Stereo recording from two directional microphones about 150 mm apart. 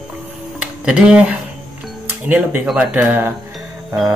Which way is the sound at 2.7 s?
10° right (ahead or behind).